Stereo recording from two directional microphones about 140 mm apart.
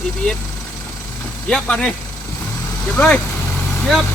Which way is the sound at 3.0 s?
10° left (ahead or behind).